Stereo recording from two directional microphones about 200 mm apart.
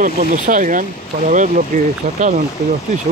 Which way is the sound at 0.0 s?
40° right (ahead or behind).